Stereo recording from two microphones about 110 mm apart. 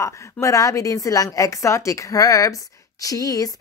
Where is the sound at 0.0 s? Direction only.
25° left (ahead or behind).